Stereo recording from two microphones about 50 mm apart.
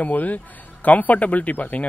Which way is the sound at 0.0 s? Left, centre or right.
Left.